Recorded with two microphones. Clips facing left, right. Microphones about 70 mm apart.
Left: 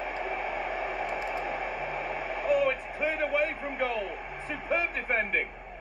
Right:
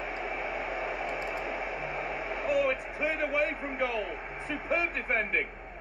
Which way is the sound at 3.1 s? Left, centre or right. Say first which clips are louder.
Left 1 dB; left.